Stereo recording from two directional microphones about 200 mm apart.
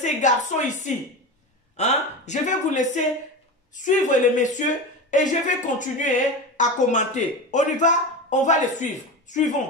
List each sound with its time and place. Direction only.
0.0 s a woman's voice: 35° left (ahead or behind)